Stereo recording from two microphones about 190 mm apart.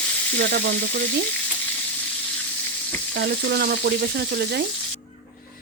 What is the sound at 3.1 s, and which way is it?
Frying, 60° right (ahead or behind).